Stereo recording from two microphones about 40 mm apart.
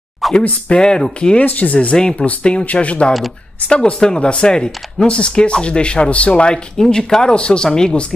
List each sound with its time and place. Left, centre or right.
0.2 s a sound: centre
0.7 s speech: left
1.4 s speech: left
2.0 s speech: centre
2.6 s speech: left
6.8 s speech: centre